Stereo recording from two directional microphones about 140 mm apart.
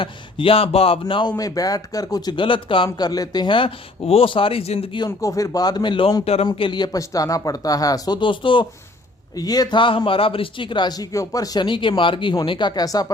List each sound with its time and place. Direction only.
0.0 s speech: 40° left (ahead or behind)
4.9 s speech: 25° left (ahead or behind)
6.2 s speech: 45° left (ahead or behind)
6.5 s speech: 35° left (ahead or behind)